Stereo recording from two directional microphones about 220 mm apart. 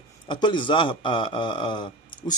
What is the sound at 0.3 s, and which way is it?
Speech, 20° left (ahead or behind).